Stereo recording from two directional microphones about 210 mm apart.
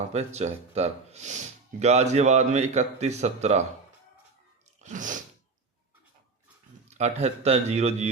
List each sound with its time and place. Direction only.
0.3 s speech: 30° right (ahead or behind)
4.8 s sneeze: 35° right (ahead or behind)
6.9 s speech: 30° right (ahead or behind)